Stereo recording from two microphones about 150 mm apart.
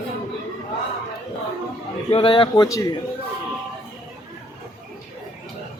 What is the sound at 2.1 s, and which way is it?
Speech, 35° left (ahead or behind).